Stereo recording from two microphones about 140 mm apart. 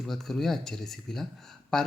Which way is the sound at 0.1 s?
Centre (ahead or behind).